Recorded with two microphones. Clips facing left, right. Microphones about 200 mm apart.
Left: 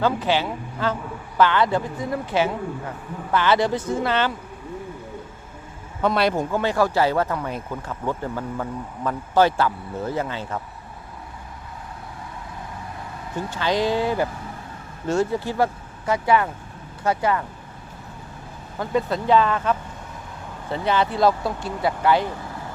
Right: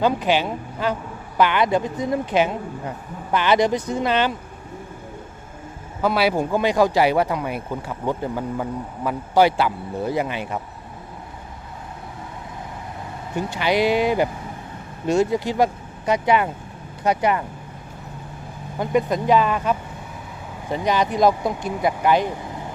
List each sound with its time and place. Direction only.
0.0 s speech: 15° right (ahead or behind)
6.0 s speech: 5° right (ahead or behind)
13.3 s speech: 15° right (ahead or behind)
18.8 s speech: 15° right (ahead or behind)